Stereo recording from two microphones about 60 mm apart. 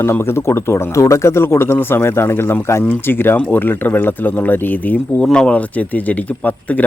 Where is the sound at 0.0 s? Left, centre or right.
Left.